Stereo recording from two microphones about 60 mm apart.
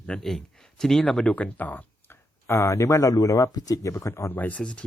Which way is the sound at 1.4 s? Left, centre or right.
Left.